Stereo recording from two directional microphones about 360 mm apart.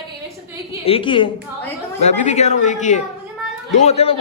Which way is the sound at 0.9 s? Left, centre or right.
Centre.